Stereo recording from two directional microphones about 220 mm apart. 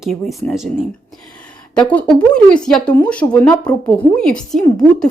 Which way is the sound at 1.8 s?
5° left (ahead or behind).